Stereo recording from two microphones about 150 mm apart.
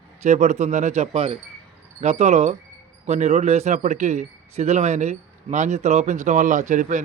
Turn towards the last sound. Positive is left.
turn(degrees=-55)  # may be behind; listen again after turning